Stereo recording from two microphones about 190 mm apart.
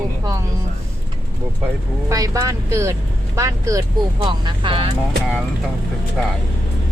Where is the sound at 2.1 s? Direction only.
20° right (ahead or behind).